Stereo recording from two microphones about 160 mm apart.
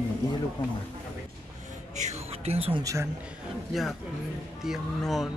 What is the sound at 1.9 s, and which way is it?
Music, 45° right (ahead or behind).